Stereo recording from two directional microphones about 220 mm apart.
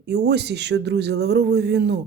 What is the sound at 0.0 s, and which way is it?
Speech, 50° right (ahead or behind).